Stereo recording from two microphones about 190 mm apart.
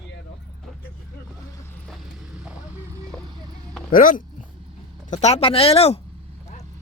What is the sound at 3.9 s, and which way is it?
Speech, 45° left (ahead or behind).